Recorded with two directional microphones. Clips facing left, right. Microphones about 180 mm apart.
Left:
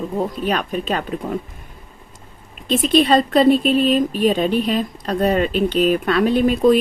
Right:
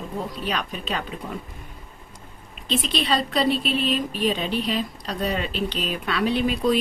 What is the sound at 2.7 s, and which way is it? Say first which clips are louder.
Speech: left 9 dB; 45° left (ahead or behind).